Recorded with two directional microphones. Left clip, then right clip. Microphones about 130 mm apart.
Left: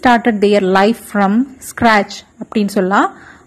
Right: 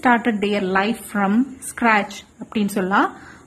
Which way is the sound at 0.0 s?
30° left (ahead or behind).